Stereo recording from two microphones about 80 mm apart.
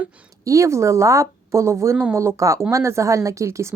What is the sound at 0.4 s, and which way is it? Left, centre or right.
Speech, right.